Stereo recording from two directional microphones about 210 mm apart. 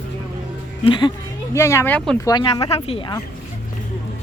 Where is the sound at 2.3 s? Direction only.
20° left (ahead or behind).